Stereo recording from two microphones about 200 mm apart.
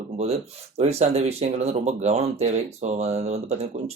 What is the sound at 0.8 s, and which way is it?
A man's voice, 30° right (ahead or behind).